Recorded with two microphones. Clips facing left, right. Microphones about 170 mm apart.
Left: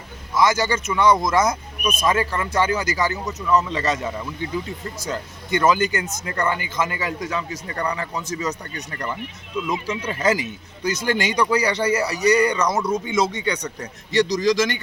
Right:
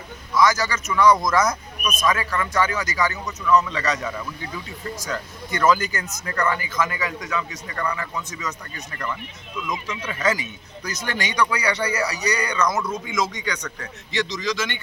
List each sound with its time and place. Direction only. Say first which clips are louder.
0.3 s speech: left 1 dB; 25° left (ahead or behind)
7.8 s speech: left 1 dB; 20° left (ahead or behind)
9.6 s speech: left 5 dB; 30° left (ahead or behind)
14.3 s speech: left 8 dB; 45° left (ahead or behind)